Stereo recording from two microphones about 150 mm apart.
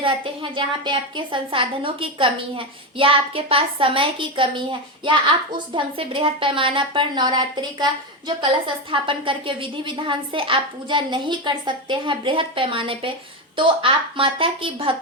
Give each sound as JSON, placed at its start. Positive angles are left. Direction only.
{"t": 0.5, "sound": "a woman's voice", "side_deg": -35}